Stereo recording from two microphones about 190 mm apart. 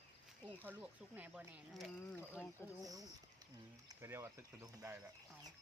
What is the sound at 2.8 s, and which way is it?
Speech, 20° right (ahead or behind).